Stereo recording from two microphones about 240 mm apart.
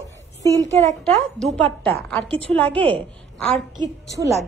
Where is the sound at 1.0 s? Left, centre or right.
Centre.